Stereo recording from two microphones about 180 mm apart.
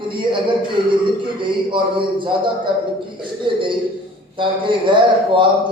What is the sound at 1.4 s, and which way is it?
Speech, 25° right (ahead or behind).